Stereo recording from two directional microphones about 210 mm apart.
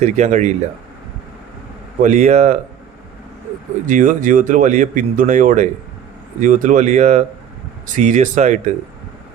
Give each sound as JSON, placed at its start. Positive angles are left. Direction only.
{"t": 0.0, "sound": "speech", "side_deg": -35}
{"t": 2.0, "sound": "speech", "side_deg": -35}
{"t": 3.8, "sound": "speech", "side_deg": -40}